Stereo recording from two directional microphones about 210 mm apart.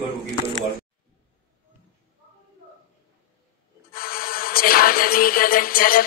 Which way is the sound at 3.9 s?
45° left (ahead or behind).